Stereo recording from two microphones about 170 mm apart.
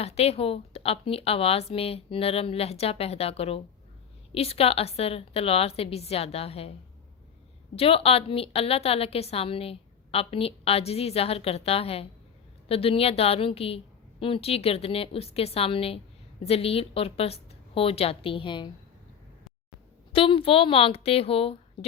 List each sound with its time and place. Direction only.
0.0 s a woman's voice: 35° left (ahead or behind)
7.8 s a woman's voice: 35° left (ahead or behind)
20.1 s a woman's voice: 30° left (ahead or behind)